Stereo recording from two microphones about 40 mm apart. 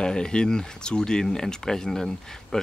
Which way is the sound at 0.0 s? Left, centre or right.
Left.